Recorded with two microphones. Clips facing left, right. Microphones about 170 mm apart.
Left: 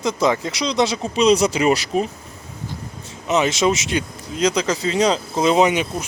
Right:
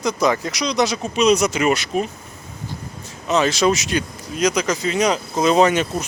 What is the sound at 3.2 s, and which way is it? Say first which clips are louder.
Speech: right 1 dB; 20° left (ahead or behind).